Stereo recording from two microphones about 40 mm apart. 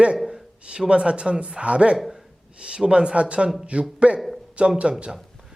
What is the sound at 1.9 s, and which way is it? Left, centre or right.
Speech, centre.